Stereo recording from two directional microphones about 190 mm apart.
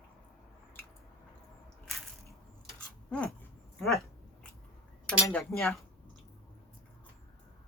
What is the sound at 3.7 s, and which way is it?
Speech, centre (ahead or behind).